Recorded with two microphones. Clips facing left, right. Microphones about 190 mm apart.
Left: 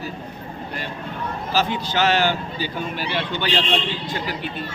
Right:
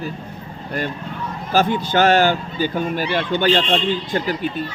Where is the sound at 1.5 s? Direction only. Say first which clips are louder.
Right 6 dB; 50° right (ahead or behind).